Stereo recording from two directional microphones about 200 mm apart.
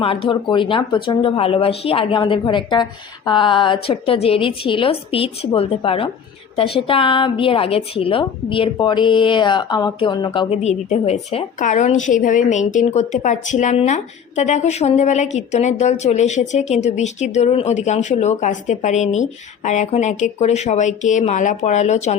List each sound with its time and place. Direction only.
0.0 s a woman's voice: 25° left (ahead or behind)